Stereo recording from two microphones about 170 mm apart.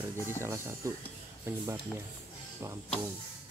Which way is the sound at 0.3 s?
15° right (ahead or behind).